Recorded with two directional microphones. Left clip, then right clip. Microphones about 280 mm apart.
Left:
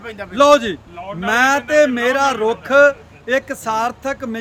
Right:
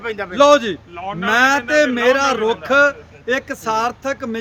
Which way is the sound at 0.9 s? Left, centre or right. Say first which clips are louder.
Right 3 dB; centre.